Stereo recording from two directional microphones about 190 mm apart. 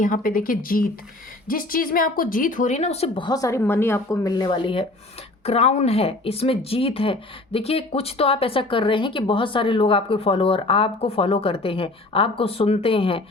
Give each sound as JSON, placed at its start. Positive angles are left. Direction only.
{"t": 0.0, "sound": "speech", "side_deg": 45}